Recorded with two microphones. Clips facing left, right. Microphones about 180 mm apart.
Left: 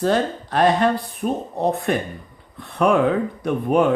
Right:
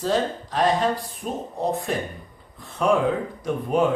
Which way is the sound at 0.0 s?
65° left (ahead or behind).